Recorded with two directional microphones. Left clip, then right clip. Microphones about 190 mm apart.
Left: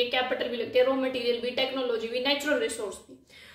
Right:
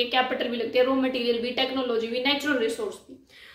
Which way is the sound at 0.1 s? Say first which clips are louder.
Right 3 dB; 25° right (ahead or behind).